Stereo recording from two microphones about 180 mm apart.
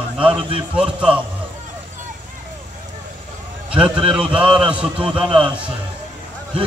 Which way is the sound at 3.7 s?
5° right (ahead or behind).